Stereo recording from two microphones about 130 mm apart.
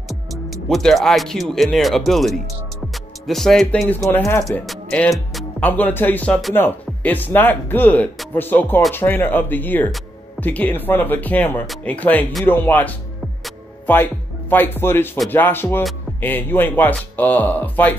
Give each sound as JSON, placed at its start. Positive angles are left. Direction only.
{"t": 0.7, "sound": "speech", "side_deg": 0}
{"t": 3.8, "sound": "speech", "side_deg": 20}
{"t": 4.5, "sound": "speech", "side_deg": 0}
{"t": 5.6, "sound": "speech", "side_deg": 15}
{"t": 14.5, "sound": "speech", "side_deg": 15}